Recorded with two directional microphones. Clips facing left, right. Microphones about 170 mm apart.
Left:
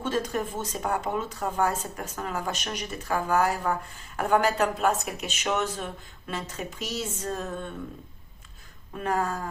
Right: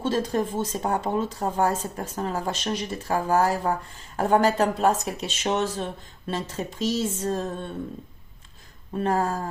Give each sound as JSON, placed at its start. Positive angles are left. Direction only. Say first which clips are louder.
{"t": 0.0, "sound": "speech", "louder": "right 4 dB", "side_deg": -30}
{"t": 9.0, "sound": "speech", "louder": "right 4 dB", "side_deg": -35}